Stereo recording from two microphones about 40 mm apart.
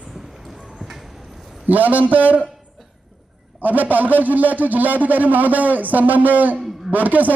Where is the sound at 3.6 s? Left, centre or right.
Right.